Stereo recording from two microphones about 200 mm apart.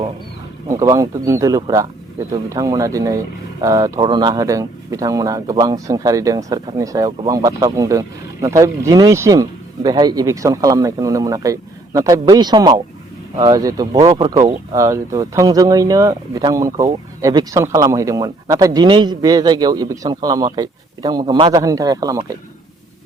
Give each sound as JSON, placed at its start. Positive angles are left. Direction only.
{"t": 0.7, "sound": "speech", "side_deg": -15}